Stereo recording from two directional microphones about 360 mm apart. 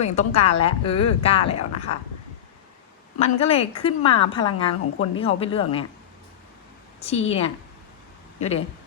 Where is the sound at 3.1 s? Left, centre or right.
Centre.